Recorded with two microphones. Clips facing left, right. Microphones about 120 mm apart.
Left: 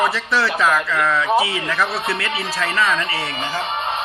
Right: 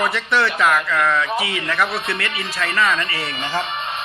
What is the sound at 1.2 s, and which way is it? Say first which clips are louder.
Speech: left 6 dB; 30° left (ahead or behind).